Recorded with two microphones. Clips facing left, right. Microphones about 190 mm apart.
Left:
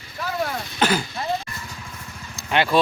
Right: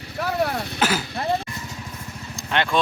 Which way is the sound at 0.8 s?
5° right (ahead or behind).